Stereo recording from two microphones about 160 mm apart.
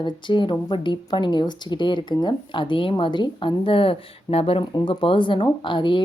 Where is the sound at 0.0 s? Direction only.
30° left (ahead or behind).